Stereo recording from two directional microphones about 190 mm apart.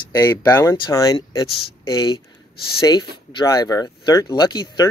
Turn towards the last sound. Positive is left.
turn(degrees=20)  # may be behind; listen again after turning